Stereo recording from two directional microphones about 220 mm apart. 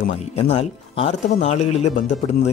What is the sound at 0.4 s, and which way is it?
Speech, 25° left (ahead or behind).